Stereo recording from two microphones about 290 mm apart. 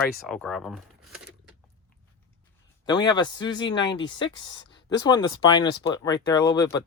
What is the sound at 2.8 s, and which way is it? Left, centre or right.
Speech, centre.